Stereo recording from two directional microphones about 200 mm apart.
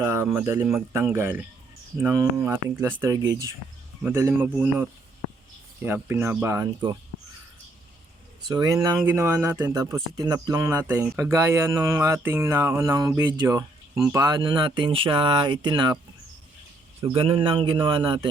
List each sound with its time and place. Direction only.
0.0 s speech: 15° right (ahead or behind)
8.4 s speech: 20° right (ahead or behind)
17.2 s speech: 25° right (ahead or behind)